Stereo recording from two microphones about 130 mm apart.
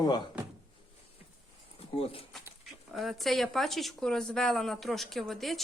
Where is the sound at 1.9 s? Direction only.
45° left (ahead or behind).